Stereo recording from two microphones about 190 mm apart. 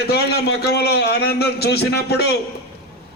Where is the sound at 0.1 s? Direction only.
55° left (ahead or behind).